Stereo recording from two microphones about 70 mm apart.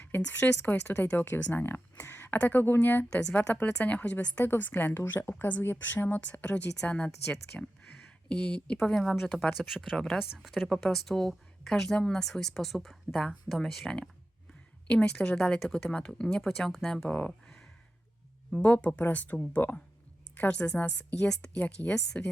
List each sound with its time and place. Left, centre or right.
0.2 s a woman's voice: left
3.1 s a woman's voice: centre
6.8 s speech: centre
8.8 s speech: centre
13.8 s speech: centre
18.6 s a woman's voice: centre